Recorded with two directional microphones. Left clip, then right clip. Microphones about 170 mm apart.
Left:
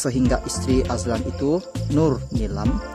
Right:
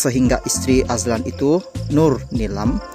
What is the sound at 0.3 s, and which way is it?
Speech, 20° right (ahead or behind).